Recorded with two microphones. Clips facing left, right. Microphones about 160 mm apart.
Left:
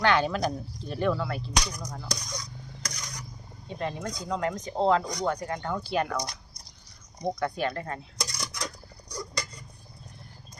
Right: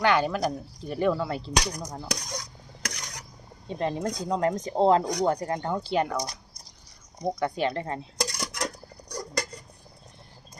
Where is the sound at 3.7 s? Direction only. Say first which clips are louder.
Right 4 dB; 35° right (ahead or behind).